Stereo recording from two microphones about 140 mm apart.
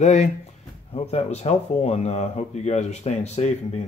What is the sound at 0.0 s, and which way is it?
Speech, 55° left (ahead or behind).